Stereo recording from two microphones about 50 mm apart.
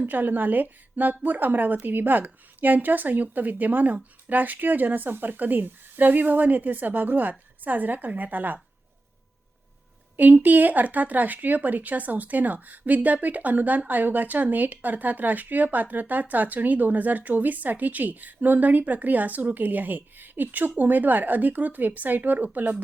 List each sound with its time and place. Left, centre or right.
0.0 s speech: right
10.2 s speech: right